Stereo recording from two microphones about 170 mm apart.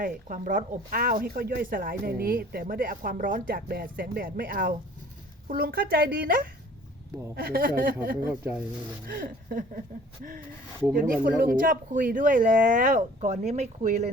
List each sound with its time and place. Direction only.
0.0 s speech: 50° right (ahead or behind)
8.3 s speech: 10° right (ahead or behind)
9.0 s speech: 55° right (ahead or behind)
10.9 s speech: 55° right (ahead or behind)